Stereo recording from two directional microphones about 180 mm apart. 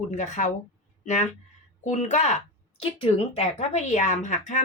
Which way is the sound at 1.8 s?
40° left (ahead or behind).